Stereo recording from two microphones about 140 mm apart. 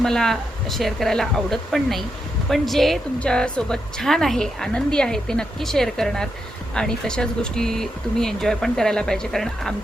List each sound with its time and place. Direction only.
0.0 s a woman's voice: 5° left (ahead or behind)